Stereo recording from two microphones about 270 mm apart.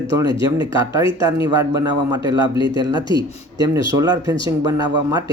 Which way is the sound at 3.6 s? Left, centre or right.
Centre.